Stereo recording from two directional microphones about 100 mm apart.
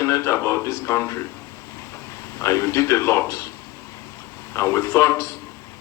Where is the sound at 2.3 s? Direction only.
30° left (ahead or behind).